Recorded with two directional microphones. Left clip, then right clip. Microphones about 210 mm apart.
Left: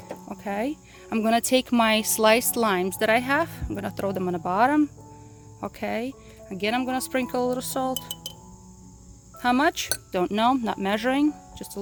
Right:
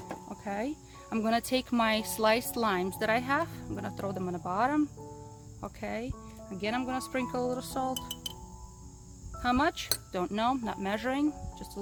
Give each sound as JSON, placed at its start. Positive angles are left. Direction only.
{"t": 0.3, "sound": "speech", "side_deg": 40}
{"t": 9.4, "sound": "speech", "side_deg": 40}